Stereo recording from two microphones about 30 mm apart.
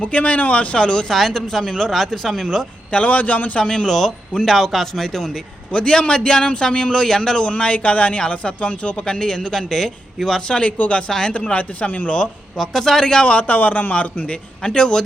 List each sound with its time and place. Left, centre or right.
0.0 s speech: left
0.8 s speech: left
1.1 s a man's voice: centre
1.4 s a man's voice: centre
2.9 s a man's voice: left
3.8 s a man's voice: centre
5.3 s a man's voice: left
7.6 s speech: left
9.0 s a man's voice: left
10.7 s speech: left
12.5 s a man's voice: centre
13.2 s speech: left
13.6 s a man's voice: left
14.6 s a man's voice: left